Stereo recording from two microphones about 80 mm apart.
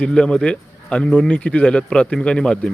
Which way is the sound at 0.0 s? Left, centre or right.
Centre.